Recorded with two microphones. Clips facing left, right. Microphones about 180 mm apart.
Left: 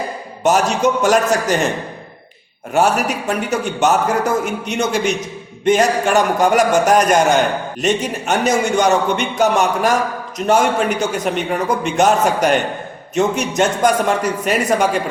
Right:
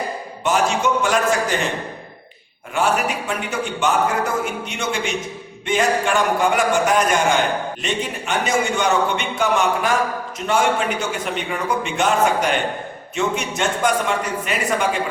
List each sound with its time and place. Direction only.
0.4 s a man's voice: 40° left (ahead or behind)
2.7 s a man's voice: 45° left (ahead or behind)